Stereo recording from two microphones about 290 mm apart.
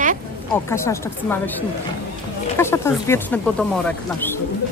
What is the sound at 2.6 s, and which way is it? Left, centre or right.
Speech, centre.